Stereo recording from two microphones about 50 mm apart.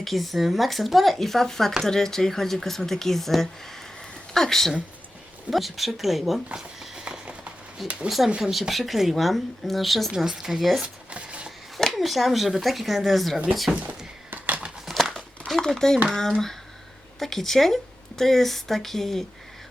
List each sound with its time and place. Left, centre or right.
0.0 s speech: centre
7.8 s speech: centre
10.8 s a sound: right
11.8 s speech: centre
13.8 s thunk: right
15.1 s crumpling: centre
16.1 s speech: centre